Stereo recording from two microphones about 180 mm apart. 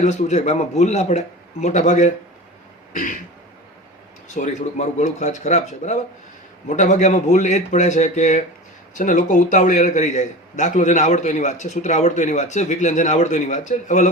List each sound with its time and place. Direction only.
0.0 s a man's voice: 40° left (ahead or behind)
2.9 s throat clearing: 45° left (ahead or behind)
4.4 s a man's voice: 40° left (ahead or behind)